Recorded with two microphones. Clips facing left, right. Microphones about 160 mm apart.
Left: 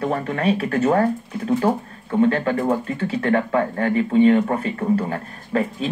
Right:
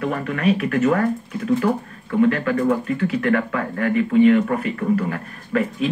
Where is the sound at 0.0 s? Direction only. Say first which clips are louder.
Even; 30° left (ahead or behind).